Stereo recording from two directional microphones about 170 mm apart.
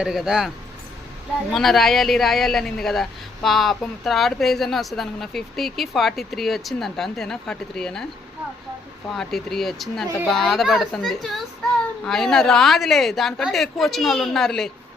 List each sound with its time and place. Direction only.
0.0 s speech: 5° right (ahead or behind)
1.5 s speech: centre (ahead or behind)
9.0 s speech: centre (ahead or behind)